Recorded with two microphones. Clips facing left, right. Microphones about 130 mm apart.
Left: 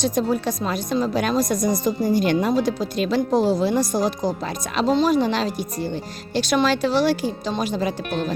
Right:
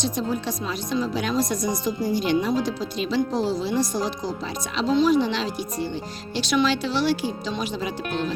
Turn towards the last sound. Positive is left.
turn(degrees=45)  # may be behind; listen again after turning